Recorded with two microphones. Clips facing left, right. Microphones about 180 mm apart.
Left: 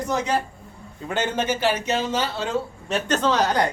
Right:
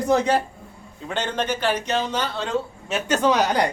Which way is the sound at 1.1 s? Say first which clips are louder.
Left 1 dB; 5° left (ahead or behind).